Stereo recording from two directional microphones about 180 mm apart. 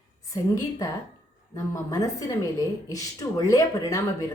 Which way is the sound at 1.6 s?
20° left (ahead or behind).